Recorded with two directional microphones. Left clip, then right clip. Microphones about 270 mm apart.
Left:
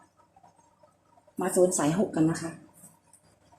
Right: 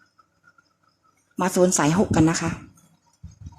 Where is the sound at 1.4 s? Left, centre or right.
Right.